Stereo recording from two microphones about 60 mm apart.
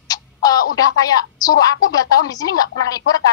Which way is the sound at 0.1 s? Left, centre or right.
Left.